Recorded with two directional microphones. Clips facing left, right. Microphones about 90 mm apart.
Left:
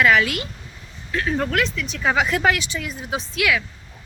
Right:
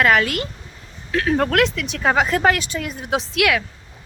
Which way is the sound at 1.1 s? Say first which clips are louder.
Right 4 dB; 65° right (ahead or behind).